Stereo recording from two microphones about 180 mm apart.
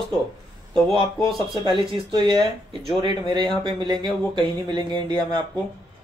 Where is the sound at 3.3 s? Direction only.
25° right (ahead or behind).